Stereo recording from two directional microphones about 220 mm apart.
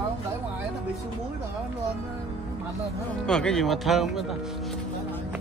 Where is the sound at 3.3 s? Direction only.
5° left (ahead or behind).